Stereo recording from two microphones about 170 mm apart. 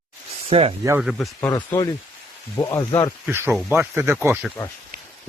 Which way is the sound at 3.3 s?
15° right (ahead or behind).